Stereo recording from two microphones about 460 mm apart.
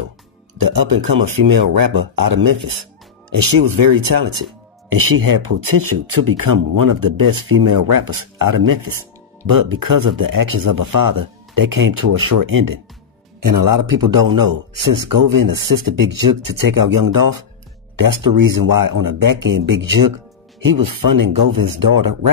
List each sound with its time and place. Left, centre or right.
0.6 s a man's voice: right